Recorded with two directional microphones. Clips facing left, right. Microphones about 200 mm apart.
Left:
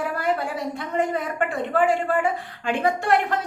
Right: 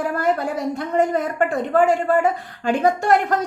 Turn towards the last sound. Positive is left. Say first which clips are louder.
# right 4 dB
turn(degrees=-40)  # may be behind; listen again after turning